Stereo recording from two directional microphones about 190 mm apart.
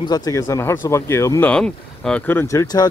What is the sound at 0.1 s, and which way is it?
Speech, 20° left (ahead or behind).